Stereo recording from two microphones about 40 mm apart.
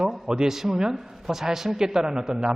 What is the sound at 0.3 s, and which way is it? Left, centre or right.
A man's voice, centre.